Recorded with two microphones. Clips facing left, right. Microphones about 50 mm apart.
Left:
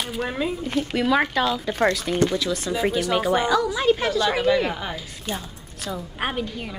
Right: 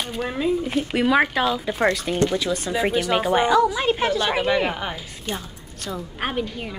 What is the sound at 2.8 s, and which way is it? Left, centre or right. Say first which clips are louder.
A woman's voice: even; right.